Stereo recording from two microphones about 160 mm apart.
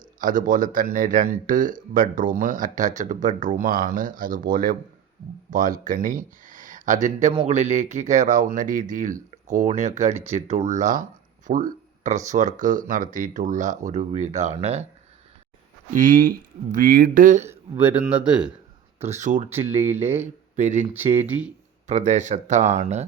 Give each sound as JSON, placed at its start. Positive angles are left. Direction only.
{"t": 0.2, "sound": "speech", "side_deg": -55}
{"t": 6.4, "sound": "a sound", "side_deg": -55}
{"t": 7.3, "sound": "speech", "side_deg": -45}
{"t": 9.3, "sound": "speech", "side_deg": -45}
{"t": 15.9, "sound": "speech", "side_deg": -55}
{"t": 17.5, "sound": "speech", "side_deg": -10}
{"t": 19.0, "sound": "speech", "side_deg": -45}
{"t": 19.7, "sound": "speech", "side_deg": -15}
{"t": 20.6, "sound": "speech", "side_deg": -50}
{"t": 21.8, "sound": "speech", "side_deg": -50}